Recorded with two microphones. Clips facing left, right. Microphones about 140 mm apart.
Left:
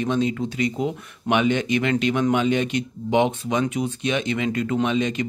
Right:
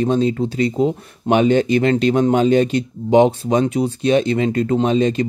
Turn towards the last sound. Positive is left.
turn(degrees=-35)  # may be behind; listen again after turning